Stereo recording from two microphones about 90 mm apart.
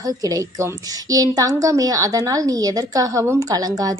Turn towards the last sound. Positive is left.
turn(degrees=-45)  # may be behind; listen again after turning